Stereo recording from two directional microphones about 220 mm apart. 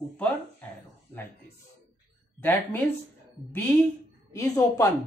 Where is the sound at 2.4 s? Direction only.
10° left (ahead or behind).